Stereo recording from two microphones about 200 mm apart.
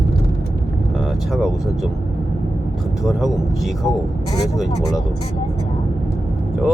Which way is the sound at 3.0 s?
Centre (ahead or behind).